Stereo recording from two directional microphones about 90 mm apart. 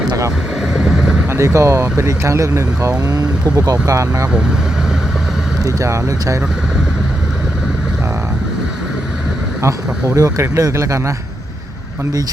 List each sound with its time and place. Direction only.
0.7 s vehicle: 5° right (ahead or behind)
1.3 s speech: 30° right (ahead or behind)
5.6 s speech: 35° right (ahead or behind)
9.6 s speech: 35° right (ahead or behind)